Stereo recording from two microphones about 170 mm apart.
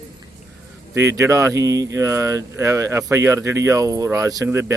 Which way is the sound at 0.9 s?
15° right (ahead or behind).